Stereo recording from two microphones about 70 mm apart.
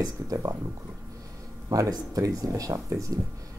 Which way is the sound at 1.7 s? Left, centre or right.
Right.